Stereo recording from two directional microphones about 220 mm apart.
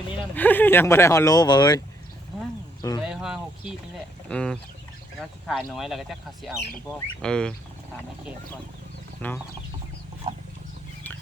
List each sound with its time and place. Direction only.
0.3 s speech: 10° left (ahead or behind)
3.0 s speech: 5° right (ahead or behind)
10.3 s a sound: 20° right (ahead or behind)